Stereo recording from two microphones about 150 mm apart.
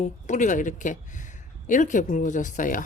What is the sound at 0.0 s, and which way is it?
Speech, 55° left (ahead or behind).